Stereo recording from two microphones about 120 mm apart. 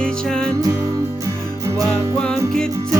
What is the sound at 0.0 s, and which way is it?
Music, 5° left (ahead or behind).